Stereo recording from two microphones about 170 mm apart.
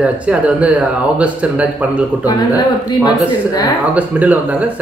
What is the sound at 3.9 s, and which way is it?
Speech, 10° right (ahead or behind).